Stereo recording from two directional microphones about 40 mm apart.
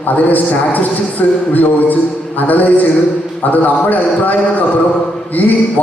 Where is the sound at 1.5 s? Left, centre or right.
Left.